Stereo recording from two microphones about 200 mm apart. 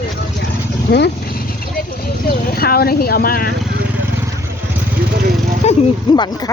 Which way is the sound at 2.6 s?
50° left (ahead or behind).